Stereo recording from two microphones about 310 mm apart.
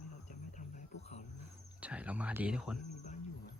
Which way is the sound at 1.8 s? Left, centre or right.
Centre.